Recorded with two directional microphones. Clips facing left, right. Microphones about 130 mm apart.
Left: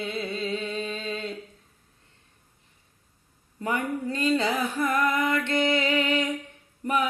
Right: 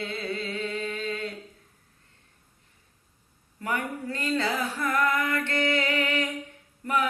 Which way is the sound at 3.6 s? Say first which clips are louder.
Left 3 dB; 20° left (ahead or behind).